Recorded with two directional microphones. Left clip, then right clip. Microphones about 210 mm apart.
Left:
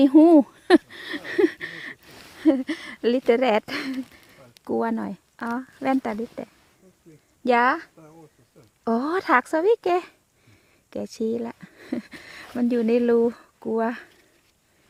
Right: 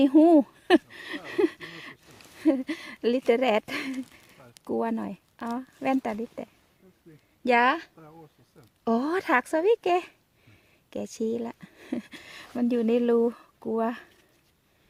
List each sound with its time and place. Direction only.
0.0 s speech: 15° left (ahead or behind)
8.0 s speech: 20° right (ahead or behind)
8.8 s speech: centre (ahead or behind)